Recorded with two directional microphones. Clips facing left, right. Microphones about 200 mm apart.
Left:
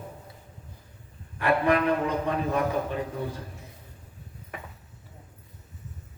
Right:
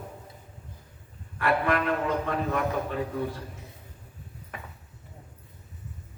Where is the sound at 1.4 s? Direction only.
15° left (ahead or behind).